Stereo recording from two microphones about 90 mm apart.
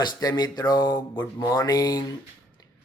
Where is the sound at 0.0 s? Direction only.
50° left (ahead or behind).